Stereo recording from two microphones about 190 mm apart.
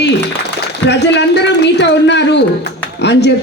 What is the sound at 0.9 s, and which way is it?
A man's voice, 65° left (ahead or behind).